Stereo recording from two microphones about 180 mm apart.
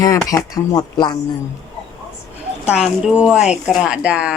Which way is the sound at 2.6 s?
5° right (ahead or behind).